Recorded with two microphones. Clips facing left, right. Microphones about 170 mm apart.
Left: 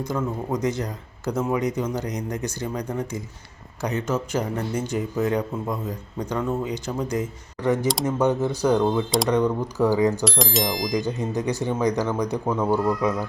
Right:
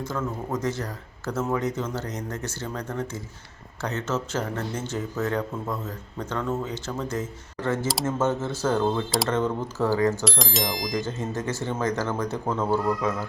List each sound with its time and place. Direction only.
0.0 s speech: 15° left (ahead or behind)
8.8 s speech: centre (ahead or behind)
9.3 s speech: 15° left (ahead or behind)
10.2 s speech: centre (ahead or behind)
11.0 s speech: 15° left (ahead or behind)